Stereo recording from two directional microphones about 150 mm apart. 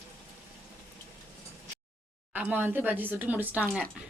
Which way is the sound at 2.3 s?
10° right (ahead or behind).